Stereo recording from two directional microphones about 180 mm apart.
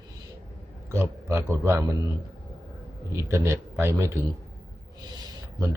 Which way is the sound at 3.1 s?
15° right (ahead or behind).